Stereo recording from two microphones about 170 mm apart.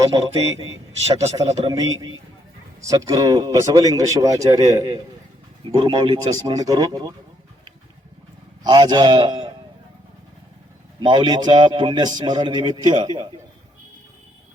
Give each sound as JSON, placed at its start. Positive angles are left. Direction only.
{"t": 1.0, "sound": "a man's voice", "side_deg": -40}
{"t": 1.6, "sound": "speech", "side_deg": -20}
{"t": 5.7, "sound": "a man's voice", "side_deg": -30}
{"t": 6.0, "sound": "speech", "side_deg": -20}
{"t": 8.6, "sound": "speech", "side_deg": -25}
{"t": 11.1, "sound": "speech", "side_deg": -25}